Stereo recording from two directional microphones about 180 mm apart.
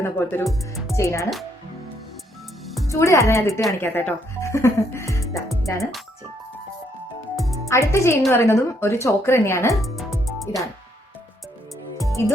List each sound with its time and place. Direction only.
0.0 s a woman's voice: 10° left (ahead or behind)
2.8 s a woman's voice: 15° left (ahead or behind)
7.7 s a woman's voice: 15° left (ahead or behind)
9.8 s music: centre (ahead or behind)
12.2 s a woman's voice: 15° left (ahead or behind)